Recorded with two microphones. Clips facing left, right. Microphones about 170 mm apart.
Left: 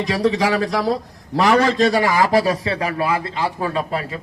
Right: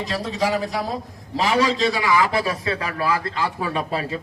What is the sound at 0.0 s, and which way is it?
Speech, 80° left.